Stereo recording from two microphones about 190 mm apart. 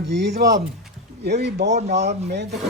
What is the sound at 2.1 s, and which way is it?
Speech, 60° right (ahead or behind).